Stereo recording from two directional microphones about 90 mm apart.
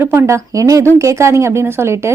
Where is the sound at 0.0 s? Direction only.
30° right (ahead or behind).